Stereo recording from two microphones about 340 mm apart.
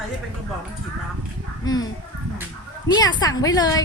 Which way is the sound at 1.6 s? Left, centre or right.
Centre.